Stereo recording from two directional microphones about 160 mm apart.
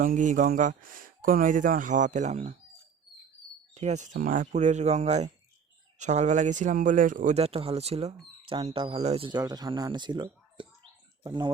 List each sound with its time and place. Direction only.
0.0 s speech: 55° right (ahead or behind)
3.8 s speech: 45° right (ahead or behind)
7.3 s speech: 40° right (ahead or behind)